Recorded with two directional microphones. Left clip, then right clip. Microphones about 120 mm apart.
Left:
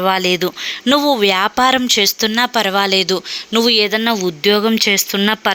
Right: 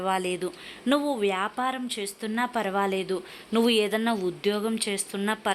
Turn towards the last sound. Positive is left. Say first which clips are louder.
# left 13 dB
turn(degrees=30)  # may be behind; listen again after turning